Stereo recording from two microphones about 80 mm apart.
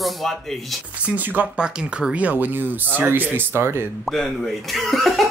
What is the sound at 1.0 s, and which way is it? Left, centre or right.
Speech, right.